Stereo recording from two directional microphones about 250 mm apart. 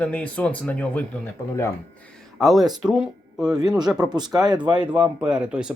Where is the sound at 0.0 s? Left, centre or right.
Centre.